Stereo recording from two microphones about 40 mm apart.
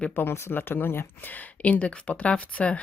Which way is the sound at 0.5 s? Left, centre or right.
Left.